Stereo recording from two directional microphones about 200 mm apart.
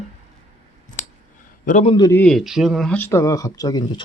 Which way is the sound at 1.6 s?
40° left (ahead or behind).